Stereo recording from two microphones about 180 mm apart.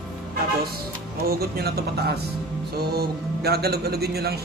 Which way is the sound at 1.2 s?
60° right (ahead or behind).